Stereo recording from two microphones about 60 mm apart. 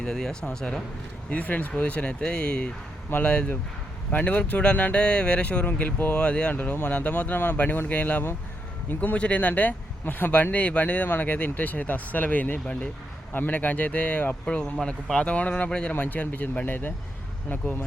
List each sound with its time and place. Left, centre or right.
0.0 s speech: centre
1.3 s speech: left